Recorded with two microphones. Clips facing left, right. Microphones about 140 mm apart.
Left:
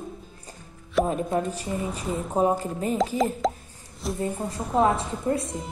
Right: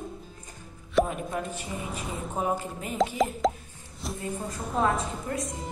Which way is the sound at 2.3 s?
35° left (ahead or behind).